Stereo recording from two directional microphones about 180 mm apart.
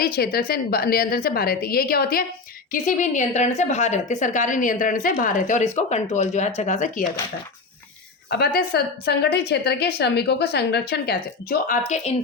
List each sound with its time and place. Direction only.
0.0 s a woman's voice: 55° left (ahead or behind)
2.7 s a woman's voice: 45° left (ahead or behind)
8.3 s a woman's voice: 60° left (ahead or behind); by 12.1 s 45° left (ahead or behind)